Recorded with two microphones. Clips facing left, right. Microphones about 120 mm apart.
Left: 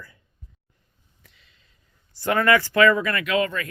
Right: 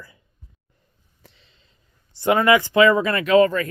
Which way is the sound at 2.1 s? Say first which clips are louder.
Right 3 dB; 20° right (ahead or behind).